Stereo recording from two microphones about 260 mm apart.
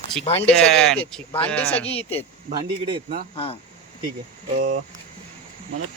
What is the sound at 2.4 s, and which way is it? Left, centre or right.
Speech, centre.